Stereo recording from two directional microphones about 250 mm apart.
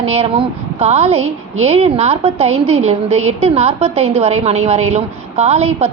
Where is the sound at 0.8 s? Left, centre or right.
Right.